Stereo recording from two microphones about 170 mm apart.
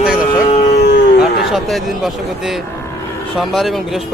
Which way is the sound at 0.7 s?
90° left.